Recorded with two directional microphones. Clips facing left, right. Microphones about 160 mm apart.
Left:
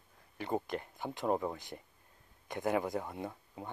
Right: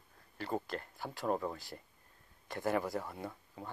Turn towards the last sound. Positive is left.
turn(degrees=20)  # may be behind; listen again after turning